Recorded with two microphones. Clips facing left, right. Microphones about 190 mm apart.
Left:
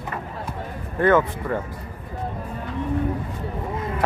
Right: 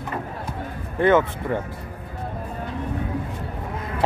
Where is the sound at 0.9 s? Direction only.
25° right (ahead or behind).